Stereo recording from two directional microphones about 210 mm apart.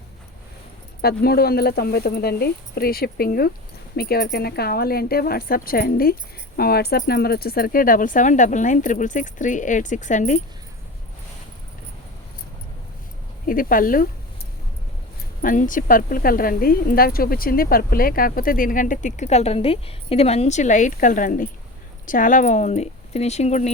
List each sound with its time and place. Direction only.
1.0 s speech: 50° left (ahead or behind)
13.5 s speech: 40° left (ahead or behind)
15.4 s speech: 40° left (ahead or behind)